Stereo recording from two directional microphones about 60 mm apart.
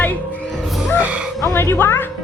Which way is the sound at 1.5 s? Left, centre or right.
Left.